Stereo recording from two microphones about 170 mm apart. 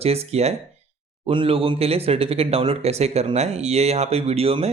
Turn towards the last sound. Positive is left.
turn(degrees=-35)  # may be behind; listen again after turning